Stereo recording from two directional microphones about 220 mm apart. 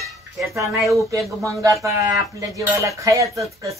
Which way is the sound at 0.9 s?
15° right (ahead or behind).